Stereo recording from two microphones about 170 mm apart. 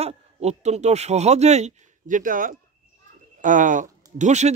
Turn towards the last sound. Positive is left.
turn(degrees=-45)  # may be behind; listen again after turning